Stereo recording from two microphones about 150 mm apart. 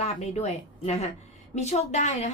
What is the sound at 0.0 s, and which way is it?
Speech, 45° left (ahead or behind).